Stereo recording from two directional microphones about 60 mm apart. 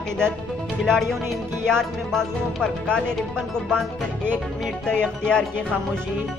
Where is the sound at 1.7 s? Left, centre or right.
Centre.